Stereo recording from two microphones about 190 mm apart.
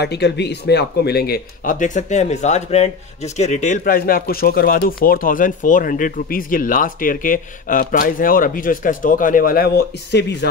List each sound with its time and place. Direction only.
0.0 s speech: 60° left (ahead or behind)